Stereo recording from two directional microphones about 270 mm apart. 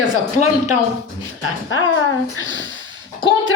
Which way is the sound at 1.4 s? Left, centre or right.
Left.